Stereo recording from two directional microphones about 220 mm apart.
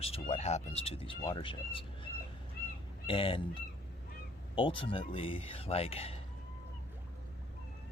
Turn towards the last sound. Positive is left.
turn(degrees=25)  # may be behind; listen again after turning